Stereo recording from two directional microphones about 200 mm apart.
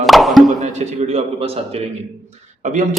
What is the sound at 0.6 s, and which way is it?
A man's voice, 35° right (ahead or behind).